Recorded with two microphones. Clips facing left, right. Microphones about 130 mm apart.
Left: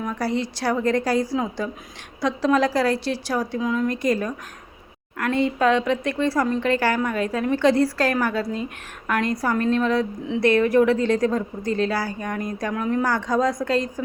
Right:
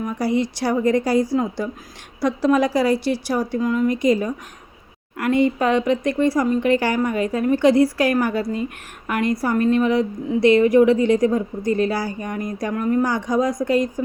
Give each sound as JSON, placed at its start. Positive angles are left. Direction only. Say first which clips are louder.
{"t": 0.0, "sound": "a woman's voice", "louder": "right 4 dB", "side_deg": -15}